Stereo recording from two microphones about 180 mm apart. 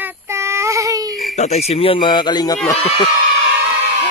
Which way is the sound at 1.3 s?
35° left (ahead or behind).